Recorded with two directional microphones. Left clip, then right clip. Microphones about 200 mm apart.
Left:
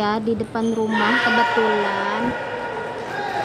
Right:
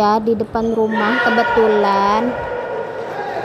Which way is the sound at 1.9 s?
25° right (ahead or behind).